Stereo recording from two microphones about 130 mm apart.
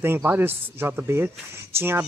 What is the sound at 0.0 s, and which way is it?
Speech, 15° right (ahead or behind).